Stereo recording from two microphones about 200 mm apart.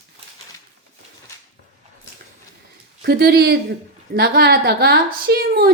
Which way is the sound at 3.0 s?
50° right (ahead or behind).